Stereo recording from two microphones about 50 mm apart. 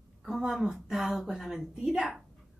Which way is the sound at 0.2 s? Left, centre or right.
Centre.